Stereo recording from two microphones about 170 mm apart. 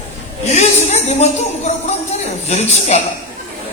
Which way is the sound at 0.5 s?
40° left (ahead or behind).